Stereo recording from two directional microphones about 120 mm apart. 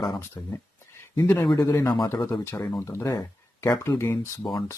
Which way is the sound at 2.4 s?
20° left (ahead or behind).